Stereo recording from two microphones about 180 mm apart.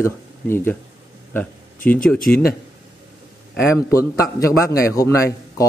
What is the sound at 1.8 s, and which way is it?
Speech, 10° left (ahead or behind).